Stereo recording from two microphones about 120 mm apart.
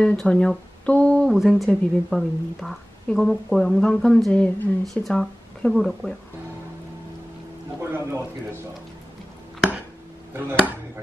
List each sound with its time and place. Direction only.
0.0 s speech: 10° left (ahead or behind)
1.3 s a woman's voice: 5° right (ahead or behind)
7.9 s a man's voice: 20° right (ahead or behind)